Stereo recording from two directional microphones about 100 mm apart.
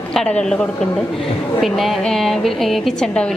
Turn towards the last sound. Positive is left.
turn(degrees=5)  # may be behind; listen again after turning